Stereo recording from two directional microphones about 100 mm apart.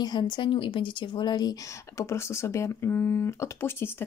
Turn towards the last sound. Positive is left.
turn(degrees=25)  # may be behind; listen again after turning